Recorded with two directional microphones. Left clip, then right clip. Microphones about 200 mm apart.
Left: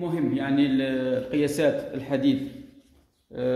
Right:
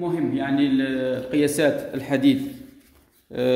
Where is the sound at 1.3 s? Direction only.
10° right (ahead or behind).